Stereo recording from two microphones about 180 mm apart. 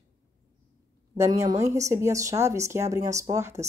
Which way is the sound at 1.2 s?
20° right (ahead or behind).